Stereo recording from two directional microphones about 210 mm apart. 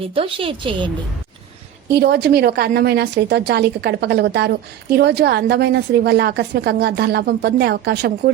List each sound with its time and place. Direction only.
0.1 s a woman's voice: 25° right (ahead or behind)
1.9 s a woman's voice: 50° right (ahead or behind)